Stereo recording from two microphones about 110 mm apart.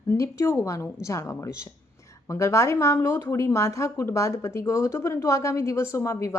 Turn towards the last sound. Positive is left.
turn(degrees=25)  # may be behind; listen again after turning